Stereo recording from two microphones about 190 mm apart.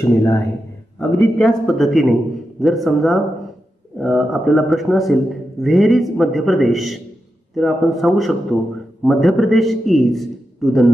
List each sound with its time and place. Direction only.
0.0 s speech: 15° left (ahead or behind)
1.2 s a man's voice: centre (ahead or behind)